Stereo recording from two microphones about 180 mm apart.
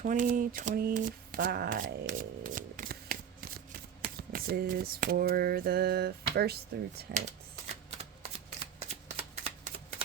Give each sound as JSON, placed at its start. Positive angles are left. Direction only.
{"t": 0.0, "sound": "speech", "side_deg": -45}
{"t": 4.0, "sound": "a sound", "side_deg": -55}
{"t": 8.5, "sound": "shuffling cards", "side_deg": -35}